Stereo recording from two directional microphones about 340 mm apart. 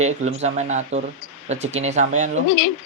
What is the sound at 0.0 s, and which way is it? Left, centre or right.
Speech, centre.